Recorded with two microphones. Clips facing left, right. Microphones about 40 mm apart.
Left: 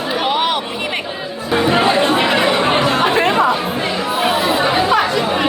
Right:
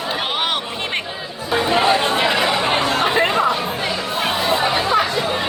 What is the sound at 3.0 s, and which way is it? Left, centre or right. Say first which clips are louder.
Chatter: left 3 dB; left.